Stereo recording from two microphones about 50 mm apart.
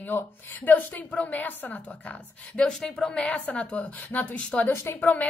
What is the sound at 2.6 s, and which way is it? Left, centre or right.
Speech, centre.